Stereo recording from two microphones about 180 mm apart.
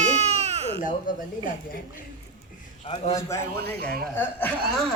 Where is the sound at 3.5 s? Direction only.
60° right (ahead or behind).